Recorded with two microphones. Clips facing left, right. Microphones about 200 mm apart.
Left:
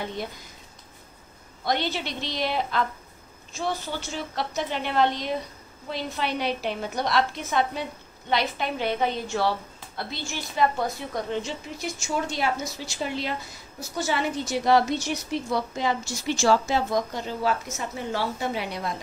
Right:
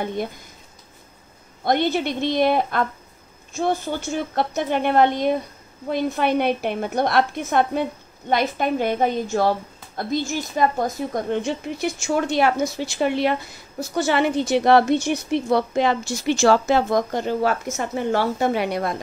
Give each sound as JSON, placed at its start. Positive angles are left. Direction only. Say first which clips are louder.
{"t": 0.0, "sound": "a woman's voice", "louder": "right 6 dB", "side_deg": -50}
{"t": 1.6, "sound": "a woman's voice", "louder": "right 7 dB", "side_deg": -50}